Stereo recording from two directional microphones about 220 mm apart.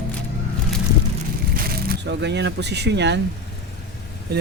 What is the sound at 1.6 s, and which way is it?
Speech, 45° right (ahead or behind).